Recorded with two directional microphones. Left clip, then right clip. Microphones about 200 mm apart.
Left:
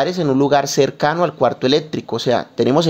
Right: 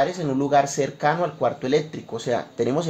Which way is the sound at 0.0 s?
40° left (ahead or behind).